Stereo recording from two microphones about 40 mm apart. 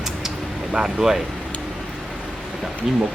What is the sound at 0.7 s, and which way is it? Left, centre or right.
Speech, centre.